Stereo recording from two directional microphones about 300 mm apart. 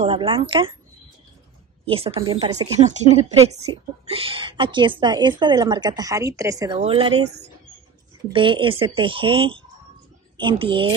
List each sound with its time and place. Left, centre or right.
0.0 s a woman's voice: centre
1.9 s a woman's voice: centre
8.3 s a woman's voice: centre